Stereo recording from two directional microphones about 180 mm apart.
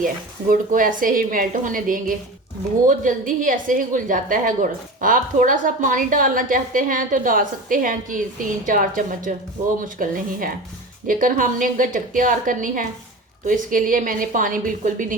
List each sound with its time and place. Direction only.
0.0 s a woman's voice: 50° right (ahead or behind)